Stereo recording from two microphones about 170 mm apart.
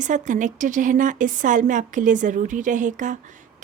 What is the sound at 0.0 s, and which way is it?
Speech, 45° right (ahead or behind).